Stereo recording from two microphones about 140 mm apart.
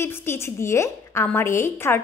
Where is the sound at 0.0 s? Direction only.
15° left (ahead or behind).